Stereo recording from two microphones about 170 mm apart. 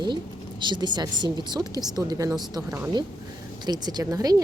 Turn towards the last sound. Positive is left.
turn(degrees=-20)  # may be behind; listen again after turning